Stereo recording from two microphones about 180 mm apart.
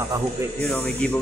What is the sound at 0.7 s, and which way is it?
Speech, 5° left (ahead or behind).